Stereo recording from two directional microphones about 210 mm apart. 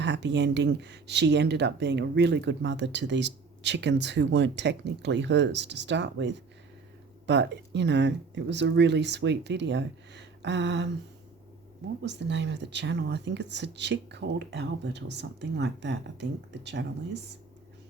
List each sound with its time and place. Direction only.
0.0 s speech: 55° right (ahead or behind)
12.0 s speech: 55° right (ahead or behind)